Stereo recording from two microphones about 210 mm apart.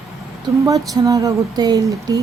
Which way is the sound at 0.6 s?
15° right (ahead or behind).